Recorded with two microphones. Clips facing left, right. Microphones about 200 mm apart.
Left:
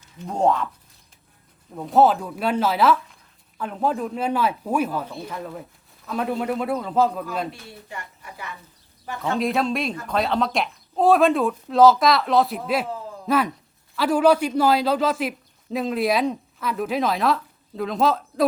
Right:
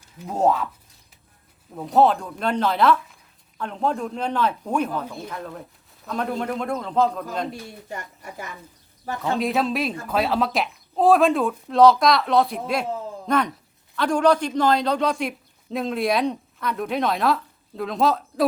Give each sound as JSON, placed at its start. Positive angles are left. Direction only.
{"t": 0.2, "sound": "speech", "side_deg": -5}
{"t": 1.7, "sound": "speech", "side_deg": 0}
{"t": 7.9, "sound": "a woman's voice", "side_deg": -45}
{"t": 9.4, "sound": "speech", "side_deg": 0}